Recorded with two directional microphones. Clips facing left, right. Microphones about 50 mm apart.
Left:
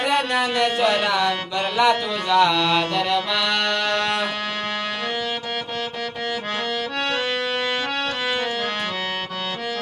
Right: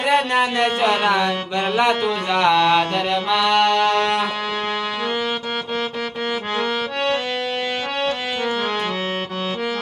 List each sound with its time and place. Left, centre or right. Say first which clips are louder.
0.0 s a sound: right 3 dB; right
0.8 s speech: right 3 dB; right
3.2 s music: right 6 dB; centre